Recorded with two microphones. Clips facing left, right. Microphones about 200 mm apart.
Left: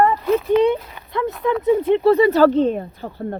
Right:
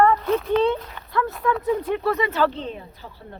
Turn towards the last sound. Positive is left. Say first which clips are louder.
# left 13 dB
turn(degrees=55)  # may be behind; listen again after turning